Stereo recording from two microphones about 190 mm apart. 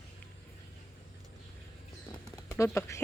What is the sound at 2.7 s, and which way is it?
Speech, 15° left (ahead or behind).